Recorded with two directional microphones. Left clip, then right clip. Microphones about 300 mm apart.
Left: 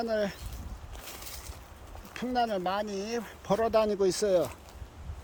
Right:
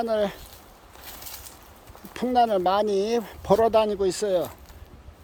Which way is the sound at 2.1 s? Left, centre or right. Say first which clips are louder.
Right 8 dB; centre.